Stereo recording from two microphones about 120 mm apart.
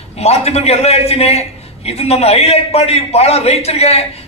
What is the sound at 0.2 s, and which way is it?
A man's voice, 60° left (ahead or behind).